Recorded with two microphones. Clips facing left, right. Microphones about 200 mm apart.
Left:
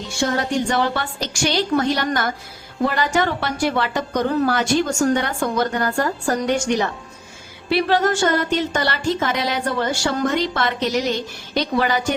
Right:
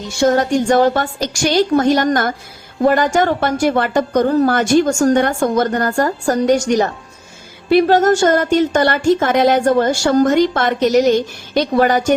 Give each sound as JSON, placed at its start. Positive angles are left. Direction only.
{"t": 0.2, "sound": "speech", "side_deg": -45}